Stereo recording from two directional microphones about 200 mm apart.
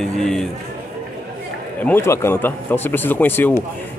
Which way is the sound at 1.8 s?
10° left (ahead or behind).